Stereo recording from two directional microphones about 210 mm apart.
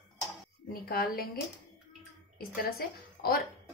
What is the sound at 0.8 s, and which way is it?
Speech, 45° left (ahead or behind).